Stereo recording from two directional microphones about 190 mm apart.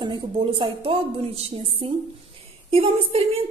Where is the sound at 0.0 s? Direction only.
30° right (ahead or behind).